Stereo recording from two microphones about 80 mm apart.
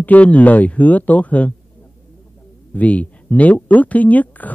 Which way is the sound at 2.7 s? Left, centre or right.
Centre.